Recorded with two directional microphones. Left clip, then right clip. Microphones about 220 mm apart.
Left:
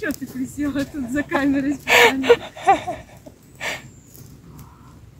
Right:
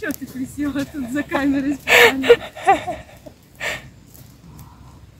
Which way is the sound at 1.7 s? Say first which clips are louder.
Right 2 dB; 15° right (ahead or behind).